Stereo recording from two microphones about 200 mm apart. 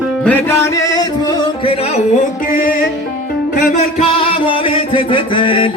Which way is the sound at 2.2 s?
45° left (ahead or behind).